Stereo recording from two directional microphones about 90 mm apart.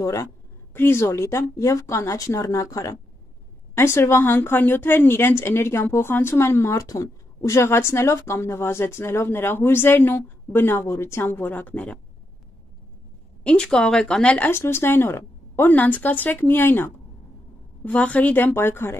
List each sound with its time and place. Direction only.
0.0 s speech: 35° left (ahead or behind)
0.7 s speech: 25° left (ahead or behind)
13.4 s a woman's voice: 10° left (ahead or behind)
14.5 s speech: 25° left (ahead or behind)